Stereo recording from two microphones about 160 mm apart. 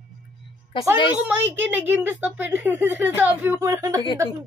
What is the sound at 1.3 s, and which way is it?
A woman's voice, 10° right (ahead or behind).